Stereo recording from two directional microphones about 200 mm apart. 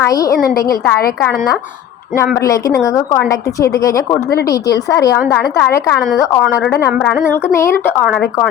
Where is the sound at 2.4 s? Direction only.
15° left (ahead or behind).